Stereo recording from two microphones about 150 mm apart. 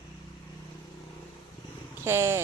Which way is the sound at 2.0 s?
15° right (ahead or behind).